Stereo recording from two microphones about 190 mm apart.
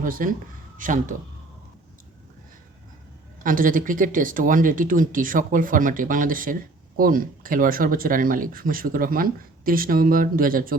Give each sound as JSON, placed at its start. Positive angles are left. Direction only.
{"t": 0.0, "sound": "speech", "side_deg": -45}
{"t": 3.4, "sound": "speech", "side_deg": -45}